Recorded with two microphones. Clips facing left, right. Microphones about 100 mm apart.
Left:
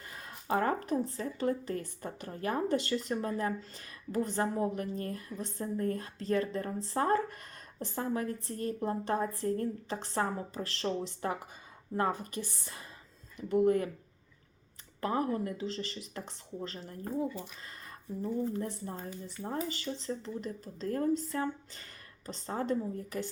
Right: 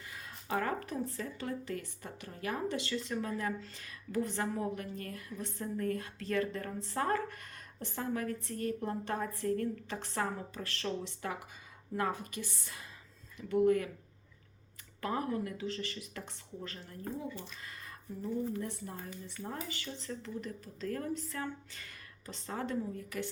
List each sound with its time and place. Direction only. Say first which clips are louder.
0.1 s speech: left 4 dB; 40° left (ahead or behind)
15.0 s speech: left 3 dB; 30° left (ahead or behind)
18.5 s speech: left 3 dB; 35° left (ahead or behind)